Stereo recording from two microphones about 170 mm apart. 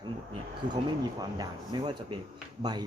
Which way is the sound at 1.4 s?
25° right (ahead or behind).